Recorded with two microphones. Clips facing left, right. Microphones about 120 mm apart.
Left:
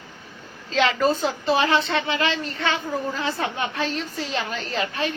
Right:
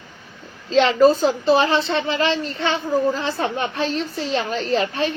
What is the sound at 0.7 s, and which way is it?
Speech, 35° right (ahead or behind).